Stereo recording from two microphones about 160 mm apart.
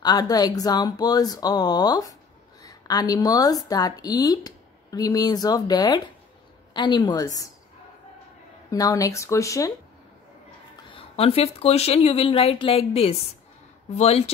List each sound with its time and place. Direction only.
0.0 s a woman's voice: 25° left (ahead or behind)
8.6 s speech: 20° left (ahead or behind)
10.9 s speech: 35° left (ahead or behind)